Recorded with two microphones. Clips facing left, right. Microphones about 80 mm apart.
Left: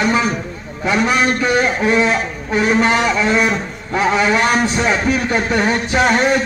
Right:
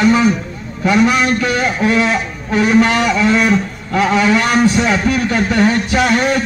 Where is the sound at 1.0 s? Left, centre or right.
Left.